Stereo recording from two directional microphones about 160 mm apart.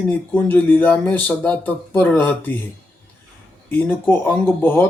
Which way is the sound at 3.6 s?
10° left (ahead or behind).